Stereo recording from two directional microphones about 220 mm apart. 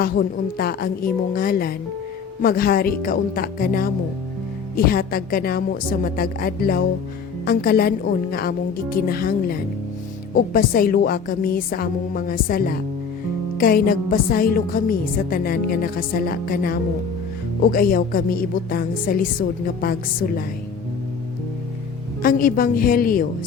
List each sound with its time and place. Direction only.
0.0 s a woman's voice: 40° left (ahead or behind)
22.2 s a woman's voice: 40° left (ahead or behind)